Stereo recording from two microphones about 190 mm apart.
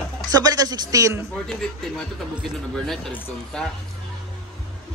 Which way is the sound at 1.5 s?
5° left (ahead or behind).